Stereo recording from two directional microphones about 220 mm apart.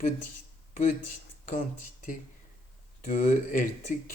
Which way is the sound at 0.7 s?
35° left (ahead or behind).